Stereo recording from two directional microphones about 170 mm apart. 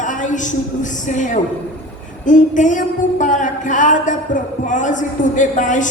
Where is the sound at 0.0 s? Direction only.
45° left (ahead or behind).